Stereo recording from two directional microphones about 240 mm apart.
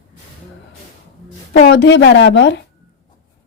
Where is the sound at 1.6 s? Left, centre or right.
Left.